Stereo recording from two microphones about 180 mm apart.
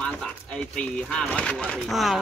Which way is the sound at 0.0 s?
5° left (ahead or behind).